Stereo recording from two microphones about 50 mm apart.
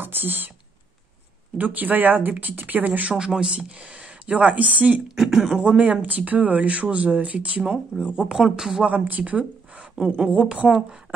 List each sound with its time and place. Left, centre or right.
0.0 s speech: right
1.6 s speech: right
3.2 s a woman's voice: centre
5.0 s a woman's voice: centre
5.9 s a woman's voice: right; by 8.8 s centre
8.8 s a woman's voice: right